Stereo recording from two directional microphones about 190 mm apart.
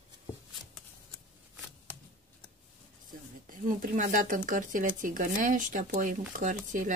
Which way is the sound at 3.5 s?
45° right (ahead or behind).